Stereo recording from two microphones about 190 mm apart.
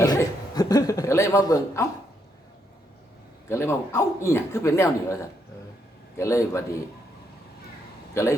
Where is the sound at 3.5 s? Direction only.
15° left (ahead or behind).